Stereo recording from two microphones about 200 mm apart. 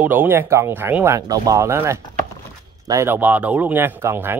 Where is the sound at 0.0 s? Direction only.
10° right (ahead or behind).